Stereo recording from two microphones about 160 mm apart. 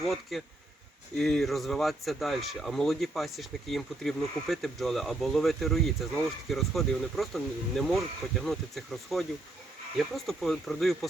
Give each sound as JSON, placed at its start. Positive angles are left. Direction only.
{"t": 0.0, "sound": "speech", "side_deg": 0}